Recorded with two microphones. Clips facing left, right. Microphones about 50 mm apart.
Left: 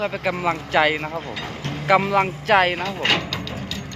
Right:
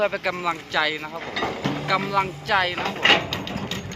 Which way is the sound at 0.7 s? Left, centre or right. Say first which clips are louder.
Left 8 dB; left.